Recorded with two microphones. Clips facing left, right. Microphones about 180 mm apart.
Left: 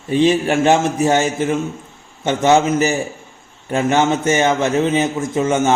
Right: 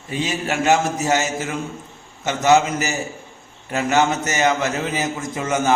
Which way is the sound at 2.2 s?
30° left (ahead or behind).